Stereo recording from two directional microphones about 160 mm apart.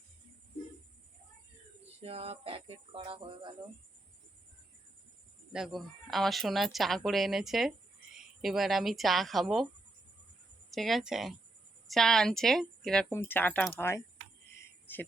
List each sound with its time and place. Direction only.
2.0 s speech: 40° right (ahead or behind)
5.5 s speech: centre (ahead or behind)
10.7 s speech: centre (ahead or behind)